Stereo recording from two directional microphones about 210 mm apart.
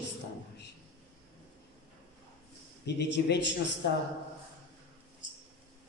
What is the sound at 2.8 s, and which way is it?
Speech, 55° left (ahead or behind).